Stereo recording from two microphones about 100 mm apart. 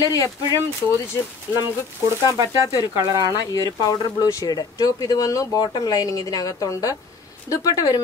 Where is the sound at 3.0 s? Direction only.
35° right (ahead or behind).